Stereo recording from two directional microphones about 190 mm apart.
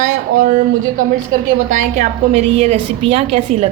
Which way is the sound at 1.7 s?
40° right (ahead or behind).